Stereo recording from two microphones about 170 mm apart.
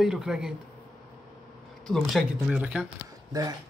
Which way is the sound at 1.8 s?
Centre (ahead or behind).